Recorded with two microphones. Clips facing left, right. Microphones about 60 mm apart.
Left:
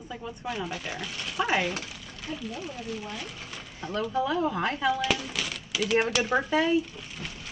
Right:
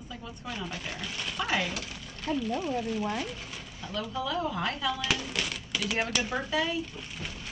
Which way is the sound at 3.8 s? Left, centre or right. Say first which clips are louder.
Left 6 dB; left.